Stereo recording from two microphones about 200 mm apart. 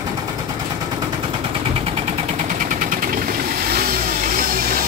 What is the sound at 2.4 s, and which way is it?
Vehicle, 45° right (ahead or behind).